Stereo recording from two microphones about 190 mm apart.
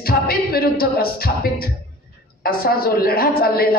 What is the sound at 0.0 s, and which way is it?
A man's voice, 55° left (ahead or behind).